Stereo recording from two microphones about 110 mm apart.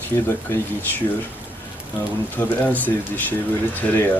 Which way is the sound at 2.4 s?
15° left (ahead or behind).